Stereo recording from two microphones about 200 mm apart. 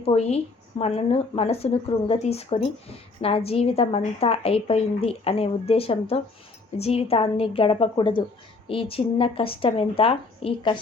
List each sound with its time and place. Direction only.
0.0 s a woman's voice: 30° left (ahead or behind)